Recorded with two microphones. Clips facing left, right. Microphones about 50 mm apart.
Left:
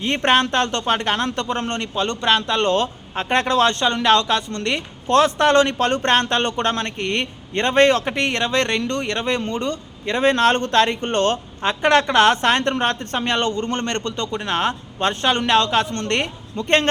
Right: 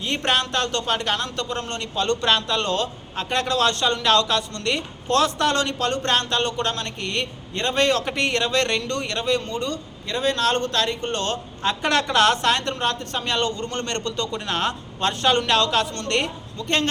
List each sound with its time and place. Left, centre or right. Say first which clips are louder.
0.0 s a man's voice: left 5 dB; left
2.0 s speech: left 1 dB; centre
2.6 s a man's voice: left 5 dB; left
11.7 s a man's voice: left 5 dB; left
16.6 s a man's voice: left 5 dB; left